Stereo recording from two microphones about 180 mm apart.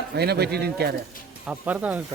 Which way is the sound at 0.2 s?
65° right (ahead or behind).